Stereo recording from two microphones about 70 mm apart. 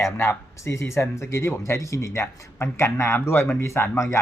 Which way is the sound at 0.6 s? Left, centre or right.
Left.